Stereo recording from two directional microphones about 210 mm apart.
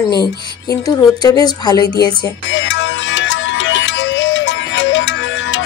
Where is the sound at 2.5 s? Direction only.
60° left (ahead or behind).